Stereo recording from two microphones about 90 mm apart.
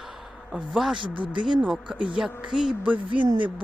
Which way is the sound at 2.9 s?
65° right (ahead or behind).